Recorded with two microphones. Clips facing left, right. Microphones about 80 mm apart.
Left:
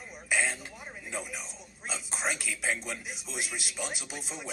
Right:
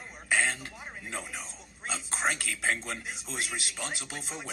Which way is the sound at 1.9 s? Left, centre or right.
Right.